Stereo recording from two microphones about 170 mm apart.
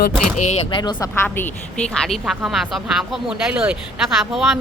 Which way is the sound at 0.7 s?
25° left (ahead or behind).